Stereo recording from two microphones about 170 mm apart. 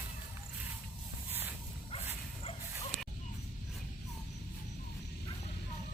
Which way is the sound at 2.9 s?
10° right (ahead or behind).